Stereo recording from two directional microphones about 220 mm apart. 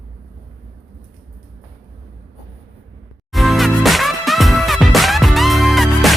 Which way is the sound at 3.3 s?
Centre (ahead or behind).